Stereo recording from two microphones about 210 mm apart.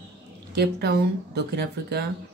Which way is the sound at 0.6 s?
50° right (ahead or behind).